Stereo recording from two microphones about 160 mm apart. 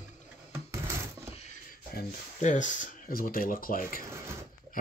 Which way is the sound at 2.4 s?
50° left (ahead or behind).